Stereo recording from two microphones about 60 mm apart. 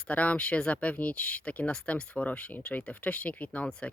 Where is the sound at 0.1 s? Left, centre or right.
Left.